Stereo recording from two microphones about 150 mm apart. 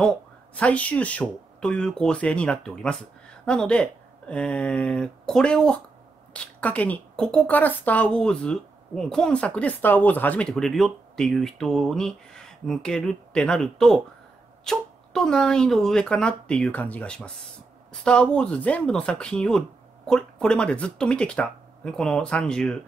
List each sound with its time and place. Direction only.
0.0 s a woman's voice: 5° left (ahead or behind)